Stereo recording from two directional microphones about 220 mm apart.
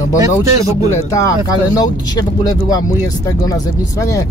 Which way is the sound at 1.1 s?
15° left (ahead or behind).